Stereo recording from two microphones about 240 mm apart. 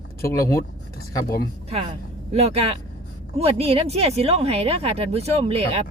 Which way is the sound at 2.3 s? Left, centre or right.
Right.